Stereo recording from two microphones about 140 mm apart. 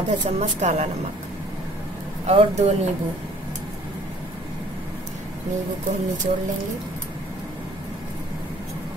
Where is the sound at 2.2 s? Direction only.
45° right (ahead or behind).